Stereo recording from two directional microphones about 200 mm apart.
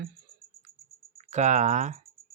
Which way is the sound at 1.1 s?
35° right (ahead or behind).